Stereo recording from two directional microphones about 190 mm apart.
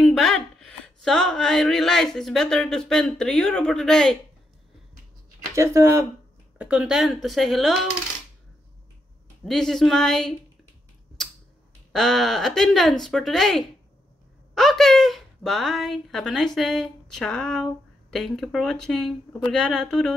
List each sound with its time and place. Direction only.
0.0 s speech: centre (ahead or behind)
5.5 s speech: 15° right (ahead or behind)
6.6 s speech: 5° right (ahead or behind)
9.4 s speech: centre (ahead or behind)
11.9 s a woman's voice: centre (ahead or behind)